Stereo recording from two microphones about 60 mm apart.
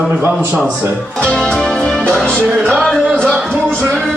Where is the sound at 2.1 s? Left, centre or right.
Centre.